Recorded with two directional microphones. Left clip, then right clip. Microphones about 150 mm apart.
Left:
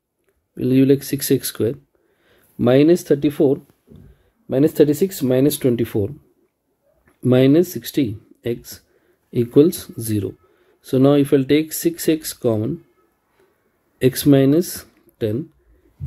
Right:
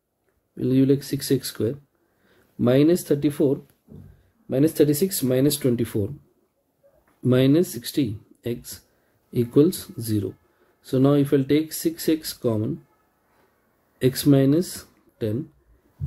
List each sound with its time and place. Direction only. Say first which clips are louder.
0.6 s speech: left 5 dB; 25° left (ahead or behind)
7.2 s speech: left 5 dB; 20° left (ahead or behind)
13.9 s speech: left 5 dB; 25° left (ahead or behind)